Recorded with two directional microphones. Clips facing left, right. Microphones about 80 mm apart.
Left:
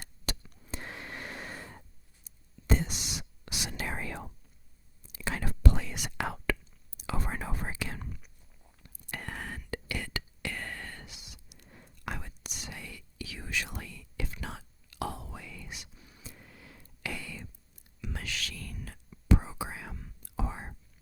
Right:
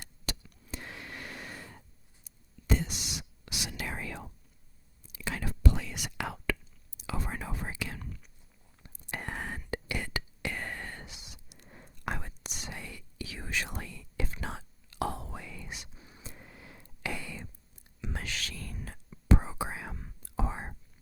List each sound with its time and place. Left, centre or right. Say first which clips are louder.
0.5 s a sound: left 1 dB; left
2.2 s whispering: left 1 dB; left
8.8 s whispering: right 2 dB; right